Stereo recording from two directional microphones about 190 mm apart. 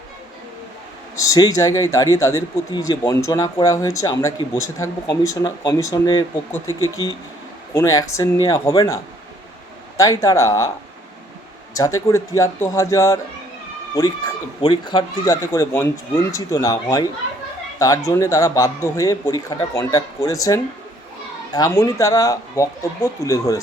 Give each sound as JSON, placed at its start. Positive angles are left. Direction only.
{"t": 1.3, "sound": "speech", "side_deg": 20}
{"t": 6.7, "sound": "speech", "side_deg": -15}
{"t": 6.9, "sound": "speech", "side_deg": 20}
{"t": 10.0, "sound": "speech", "side_deg": 15}
{"t": 11.7, "sound": "speech", "side_deg": 15}
{"t": 14.6, "sound": "speech", "side_deg": 25}